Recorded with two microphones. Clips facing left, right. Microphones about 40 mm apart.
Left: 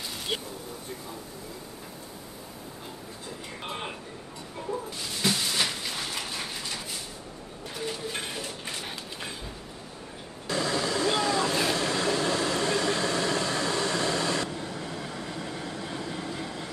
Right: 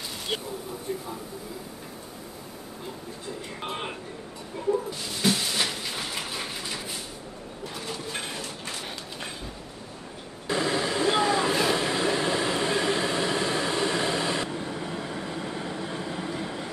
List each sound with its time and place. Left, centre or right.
0.3 s speech: centre
0.9 s a man's voice: centre
3.6 s a man's voice: centre
4.6 s a sound: centre
7.7 s speech: centre
8.4 s a sound: centre
10.4 s vehicle: right